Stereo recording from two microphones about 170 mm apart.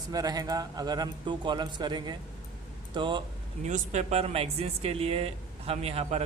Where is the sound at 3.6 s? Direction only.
45° right (ahead or behind).